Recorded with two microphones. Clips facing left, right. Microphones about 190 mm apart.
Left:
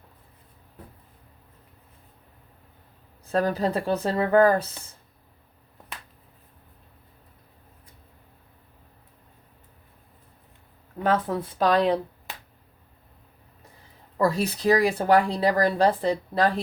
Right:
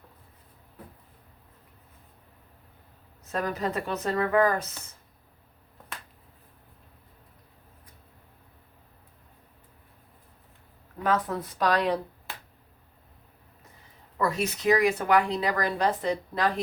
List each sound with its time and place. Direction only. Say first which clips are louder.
3.2 s speech: left 6 dB; 30° left (ahead or behind)
11.0 s speech: left 3 dB; 30° left (ahead or behind)
14.2 s speech: left 4 dB; 35° left (ahead or behind)